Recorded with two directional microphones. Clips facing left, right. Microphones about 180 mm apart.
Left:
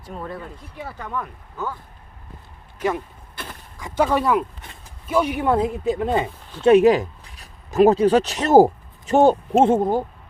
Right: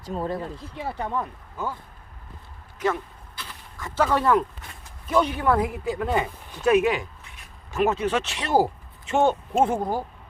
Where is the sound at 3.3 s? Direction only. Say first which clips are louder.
Left 6 dB; 50° left (ahead or behind).